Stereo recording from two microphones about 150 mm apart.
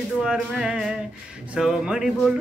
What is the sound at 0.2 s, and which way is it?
Speech, 5° right (ahead or behind).